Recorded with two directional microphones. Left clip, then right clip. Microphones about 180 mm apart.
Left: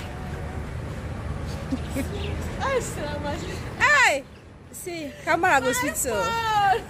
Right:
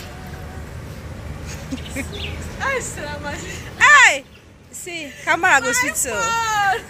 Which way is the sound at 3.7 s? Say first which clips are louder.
Right 8 dB; centre (ahead or behind).